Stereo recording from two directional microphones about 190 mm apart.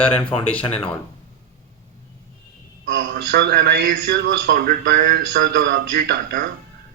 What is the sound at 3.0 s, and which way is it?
A man's voice, 60° right (ahead or behind).